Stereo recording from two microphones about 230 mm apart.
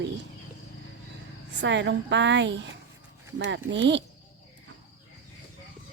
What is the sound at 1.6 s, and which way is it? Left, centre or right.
A woman's voice, right.